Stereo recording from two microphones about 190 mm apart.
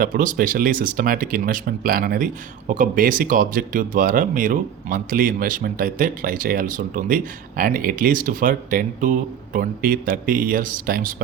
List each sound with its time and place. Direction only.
0.0 s speech: 45° right (ahead or behind)